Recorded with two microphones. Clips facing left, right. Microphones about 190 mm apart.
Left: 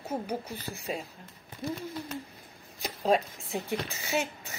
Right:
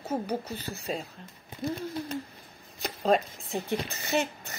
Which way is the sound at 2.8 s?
5° left (ahead or behind).